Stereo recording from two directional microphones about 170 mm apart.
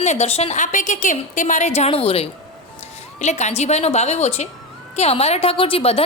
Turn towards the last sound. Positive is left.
turn(degrees=35)  # may be behind; listen again after turning